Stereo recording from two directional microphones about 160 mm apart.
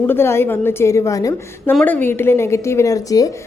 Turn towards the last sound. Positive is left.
turn(degrees=20)  # may be behind; listen again after turning